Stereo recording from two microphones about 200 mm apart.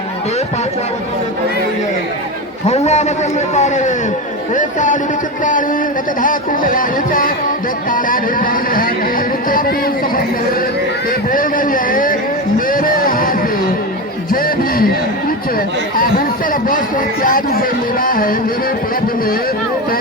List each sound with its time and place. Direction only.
2.6 s a man's voice: 35° left (ahead or behind)
6.2 s speech: 45° left (ahead or behind)
11.3 s speech: 45° left (ahead or behind)
12.5 s a sound: 45° left (ahead or behind)
14.3 s a sound: 45° left (ahead or behind)
16.0 s chatter: 45° left (ahead or behind)
17.2 s speech: 45° left (ahead or behind)